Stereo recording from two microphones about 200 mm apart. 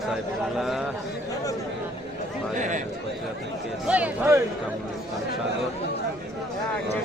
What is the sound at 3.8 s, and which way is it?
Speech, 5° right (ahead or behind).